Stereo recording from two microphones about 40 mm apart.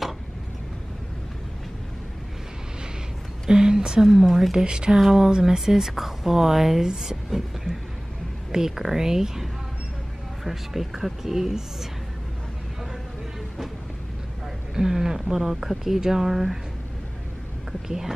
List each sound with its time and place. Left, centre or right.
3.4 s a sound: centre
4.0 s a woman's voice: centre
4.6 s speech: right
4.9 s speech: centre
8.5 s speech: centre
14.8 s speech: centre
17.8 s speech: centre